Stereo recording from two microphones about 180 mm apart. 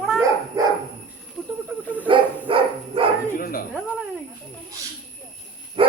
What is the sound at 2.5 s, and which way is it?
Dog, 30° right (ahead or behind).